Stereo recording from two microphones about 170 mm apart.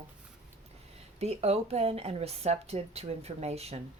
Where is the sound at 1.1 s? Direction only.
40° right (ahead or behind).